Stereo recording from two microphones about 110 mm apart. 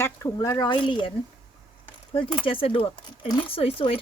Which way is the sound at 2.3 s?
55° left (ahead or behind).